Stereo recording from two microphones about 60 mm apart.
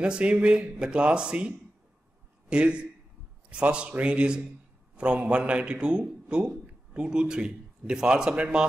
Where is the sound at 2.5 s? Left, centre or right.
Centre.